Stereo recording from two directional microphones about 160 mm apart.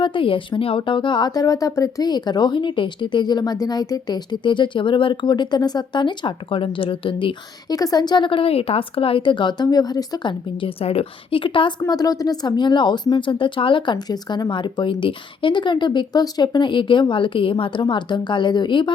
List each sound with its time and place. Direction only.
0.0 s speech: 30° left (ahead or behind)